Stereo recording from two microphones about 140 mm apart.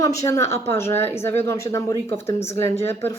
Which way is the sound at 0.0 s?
20° left (ahead or behind).